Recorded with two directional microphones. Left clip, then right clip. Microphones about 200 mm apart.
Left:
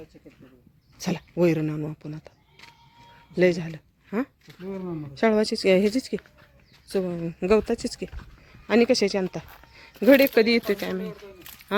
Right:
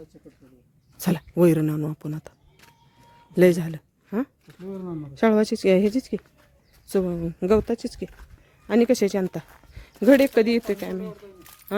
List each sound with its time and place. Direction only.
0.9 s speech: 35° right (ahead or behind)
3.3 s speech: 35° right (ahead or behind)
4.1 s speech: 20° right (ahead or behind)
4.4 s speech: 5° left (ahead or behind)
4.9 s a woman's voice: 20° right (ahead or behind); by 11.9 s 5° right (ahead or behind)